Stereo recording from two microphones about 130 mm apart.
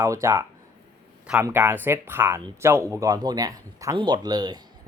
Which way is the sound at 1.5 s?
15° right (ahead or behind).